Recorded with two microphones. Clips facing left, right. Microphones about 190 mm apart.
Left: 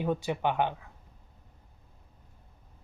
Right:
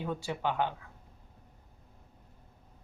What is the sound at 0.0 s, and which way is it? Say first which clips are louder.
Speech: left 5 dB; 20° left (ahead or behind).